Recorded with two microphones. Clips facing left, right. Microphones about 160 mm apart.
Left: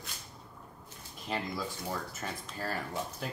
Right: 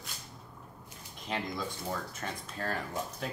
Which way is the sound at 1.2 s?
Centre (ahead or behind).